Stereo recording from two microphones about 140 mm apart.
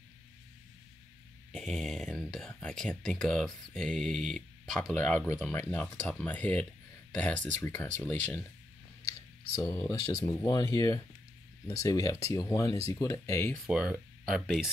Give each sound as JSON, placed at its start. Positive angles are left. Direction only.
{"t": 1.5, "sound": "speech", "side_deg": 5}
{"t": 9.6, "sound": "speech", "side_deg": 20}
{"t": 13.7, "sound": "speech", "side_deg": -5}